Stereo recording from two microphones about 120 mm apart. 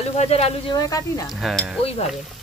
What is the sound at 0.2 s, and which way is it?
Speech, 60° left (ahead or behind).